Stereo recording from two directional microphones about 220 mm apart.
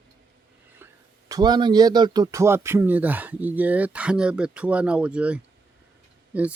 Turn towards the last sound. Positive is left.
turn(degrees=-5)  # may be behind; listen again after turning